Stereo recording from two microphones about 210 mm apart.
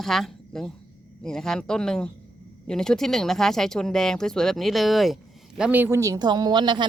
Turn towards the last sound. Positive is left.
turn(degrees=-20)  # may be behind; listen again after turning